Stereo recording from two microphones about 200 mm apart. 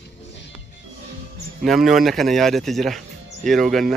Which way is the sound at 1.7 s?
Centre (ahead or behind).